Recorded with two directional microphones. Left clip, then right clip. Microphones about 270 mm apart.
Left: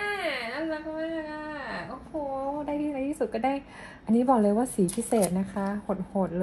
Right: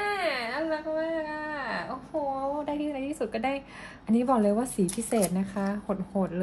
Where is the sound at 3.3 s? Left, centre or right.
Centre.